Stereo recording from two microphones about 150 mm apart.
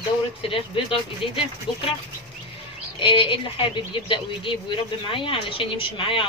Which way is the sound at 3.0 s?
35° left (ahead or behind).